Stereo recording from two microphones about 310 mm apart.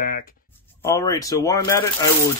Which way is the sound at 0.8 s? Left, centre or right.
Centre.